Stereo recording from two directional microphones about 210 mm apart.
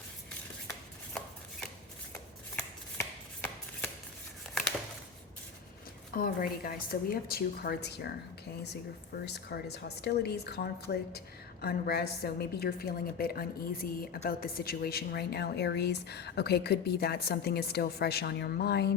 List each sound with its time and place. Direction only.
3.0 s chopping: 5° left (ahead or behind)
6.1 s a woman's voice: 45° left (ahead or behind)
9.2 s a woman's voice: 50° left (ahead or behind)